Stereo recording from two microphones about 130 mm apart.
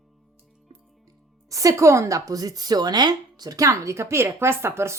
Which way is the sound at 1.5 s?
25° right (ahead or behind).